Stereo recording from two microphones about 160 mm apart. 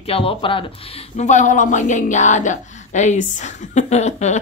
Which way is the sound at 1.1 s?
50° left (ahead or behind).